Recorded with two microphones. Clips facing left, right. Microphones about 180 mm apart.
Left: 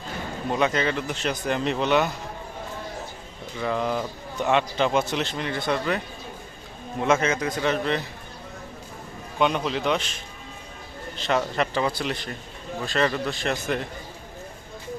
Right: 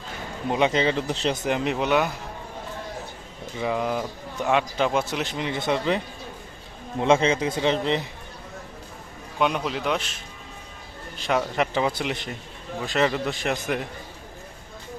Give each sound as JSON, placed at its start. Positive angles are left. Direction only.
{"t": 0.5, "sound": "a man's voice", "side_deg": -20}
{"t": 1.5, "sound": "speech", "side_deg": -15}
{"t": 3.6, "sound": "speech", "side_deg": -10}
{"t": 7.0, "sound": "a man's voice", "side_deg": -25}
{"t": 9.4, "sound": "a man's voice", "side_deg": -5}
{"t": 11.2, "sound": "speech", "side_deg": -10}